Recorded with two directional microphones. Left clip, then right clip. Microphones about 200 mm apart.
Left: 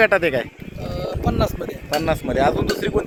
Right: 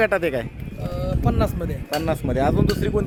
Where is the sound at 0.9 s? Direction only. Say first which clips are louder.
Left 1 dB; 5° right (ahead or behind).